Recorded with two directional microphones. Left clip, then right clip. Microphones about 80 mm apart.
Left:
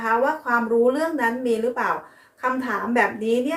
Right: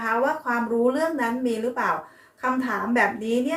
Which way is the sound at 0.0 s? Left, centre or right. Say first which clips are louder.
Left 2 dB; left.